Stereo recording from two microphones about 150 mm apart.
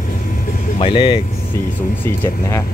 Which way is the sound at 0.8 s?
35° left (ahead or behind).